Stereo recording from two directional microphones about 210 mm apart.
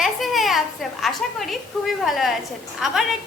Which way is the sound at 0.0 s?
Centre (ahead or behind).